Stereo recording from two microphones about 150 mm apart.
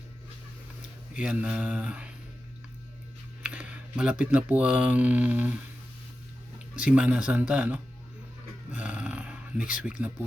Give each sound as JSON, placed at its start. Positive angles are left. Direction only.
{"t": 1.1, "sound": "speech", "side_deg": -5}
{"t": 3.4, "sound": "speech", "side_deg": -10}
{"t": 6.7, "sound": "speech", "side_deg": -10}
{"t": 8.7, "sound": "a sound", "side_deg": -10}